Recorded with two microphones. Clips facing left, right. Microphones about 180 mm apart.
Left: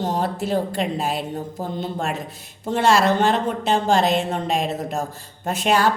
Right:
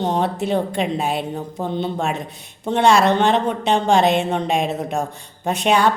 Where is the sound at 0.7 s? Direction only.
Centre (ahead or behind).